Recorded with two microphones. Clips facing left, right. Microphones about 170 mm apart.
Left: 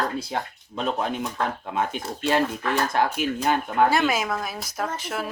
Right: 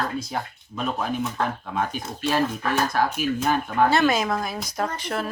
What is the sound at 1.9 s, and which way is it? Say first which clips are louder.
Speech: left 2 dB; 20° left (ahead or behind).